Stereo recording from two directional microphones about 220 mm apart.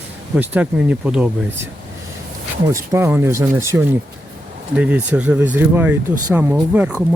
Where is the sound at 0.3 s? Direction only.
5° right (ahead or behind).